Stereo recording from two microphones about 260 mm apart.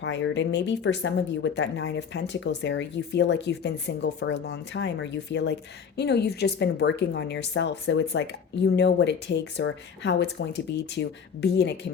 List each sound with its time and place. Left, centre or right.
0.0 s speech: left